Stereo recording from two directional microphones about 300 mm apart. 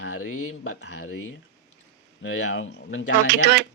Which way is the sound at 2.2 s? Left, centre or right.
Left.